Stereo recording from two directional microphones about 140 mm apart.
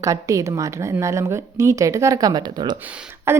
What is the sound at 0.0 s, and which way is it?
Speech, 20° right (ahead or behind).